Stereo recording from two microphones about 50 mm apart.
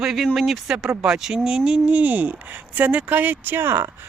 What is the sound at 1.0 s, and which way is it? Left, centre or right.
Speech, centre.